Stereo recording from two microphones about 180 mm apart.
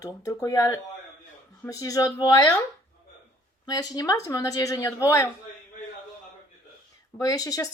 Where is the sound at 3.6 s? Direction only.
20° left (ahead or behind).